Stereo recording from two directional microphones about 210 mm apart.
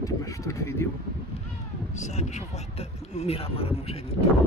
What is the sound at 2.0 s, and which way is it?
Speech, 35° left (ahead or behind).